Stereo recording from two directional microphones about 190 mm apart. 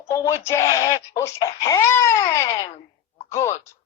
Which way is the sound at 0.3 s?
15° left (ahead or behind).